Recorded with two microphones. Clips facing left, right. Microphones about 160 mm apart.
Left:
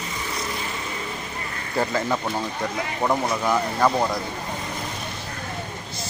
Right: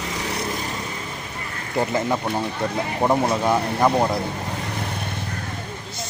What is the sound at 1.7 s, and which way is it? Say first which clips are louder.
Speech: right 2 dB; 20° right (ahead or behind).